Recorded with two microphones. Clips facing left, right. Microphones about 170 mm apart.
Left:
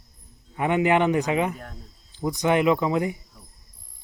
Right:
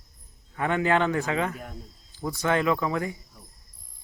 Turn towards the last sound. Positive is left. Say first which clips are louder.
# left 4 dB
turn(degrees=20)  # may be behind; listen again after turning